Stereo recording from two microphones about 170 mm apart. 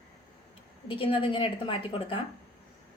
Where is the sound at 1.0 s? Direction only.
30° left (ahead or behind).